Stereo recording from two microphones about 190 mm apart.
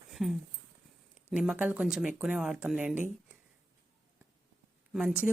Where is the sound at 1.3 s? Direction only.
5° right (ahead or behind).